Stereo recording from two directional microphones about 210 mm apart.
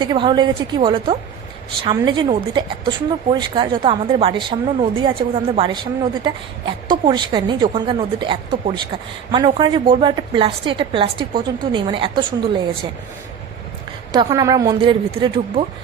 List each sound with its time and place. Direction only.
0.0 s a woman's voice: 20° right (ahead or behind)
6.8 s a woman's voice: 20° right (ahead or behind)
14.1 s speech: 15° right (ahead or behind)